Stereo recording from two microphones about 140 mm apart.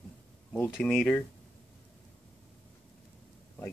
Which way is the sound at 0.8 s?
5° left (ahead or behind).